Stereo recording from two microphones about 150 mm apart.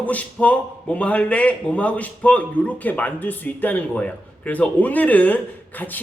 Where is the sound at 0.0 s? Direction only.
10° left (ahead or behind).